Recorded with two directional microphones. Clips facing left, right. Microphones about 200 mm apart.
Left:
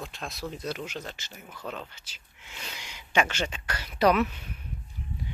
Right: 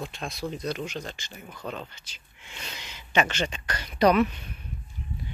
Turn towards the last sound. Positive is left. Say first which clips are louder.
# right 2 dB
turn(degrees=5)  # may be behind; listen again after turning